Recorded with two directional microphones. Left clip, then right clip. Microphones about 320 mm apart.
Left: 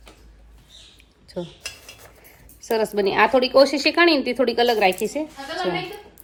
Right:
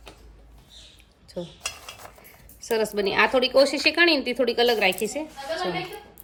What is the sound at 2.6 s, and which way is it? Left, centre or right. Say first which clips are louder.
A woman's voice: left 3 dB; centre.